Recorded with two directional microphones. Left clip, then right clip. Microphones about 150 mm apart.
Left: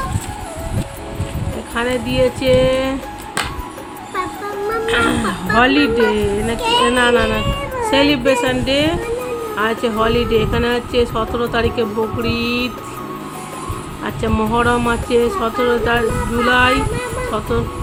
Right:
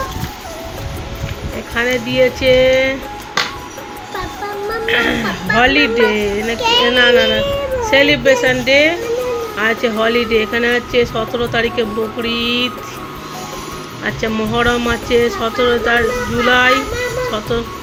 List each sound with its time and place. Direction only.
1.7 s speech: 10° left (ahead or behind)
4.9 s a child's voice: 20° left (ahead or behind)
14.0 s speech: 10° left (ahead or behind)